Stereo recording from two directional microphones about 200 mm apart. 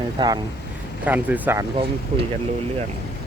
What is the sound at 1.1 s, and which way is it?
Speech, 10° right (ahead or behind).